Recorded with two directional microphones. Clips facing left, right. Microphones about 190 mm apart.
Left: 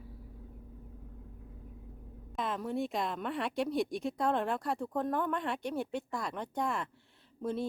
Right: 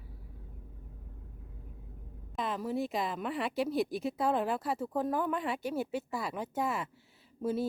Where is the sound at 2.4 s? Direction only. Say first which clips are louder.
Right 1 dB; centre (ahead or behind).